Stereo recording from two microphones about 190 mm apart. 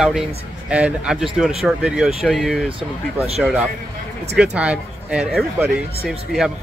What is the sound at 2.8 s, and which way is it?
Speech, 30° right (ahead or behind).